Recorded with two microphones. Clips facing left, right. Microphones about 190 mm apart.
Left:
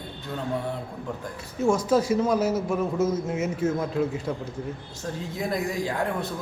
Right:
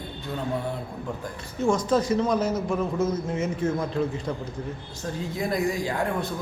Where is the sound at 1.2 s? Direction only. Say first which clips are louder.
Left 1 dB; 5° left (ahead or behind).